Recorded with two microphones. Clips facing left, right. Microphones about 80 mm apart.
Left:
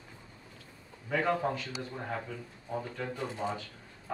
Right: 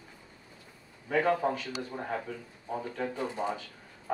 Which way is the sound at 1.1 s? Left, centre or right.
Centre.